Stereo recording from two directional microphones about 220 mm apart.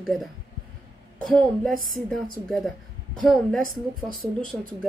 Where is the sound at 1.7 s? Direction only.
40° right (ahead or behind).